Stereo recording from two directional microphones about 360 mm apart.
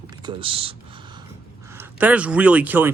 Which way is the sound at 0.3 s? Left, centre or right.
Centre.